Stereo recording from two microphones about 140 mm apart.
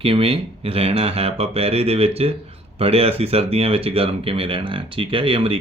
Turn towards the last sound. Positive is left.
turn(degrees=-40)  # may be behind; listen again after turning